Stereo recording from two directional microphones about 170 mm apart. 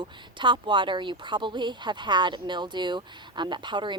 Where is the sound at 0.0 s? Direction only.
30° right (ahead or behind).